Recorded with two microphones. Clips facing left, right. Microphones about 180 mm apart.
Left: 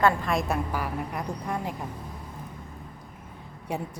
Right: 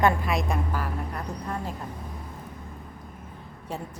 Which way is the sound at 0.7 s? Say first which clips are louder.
Left 1 dB; 10° left (ahead or behind).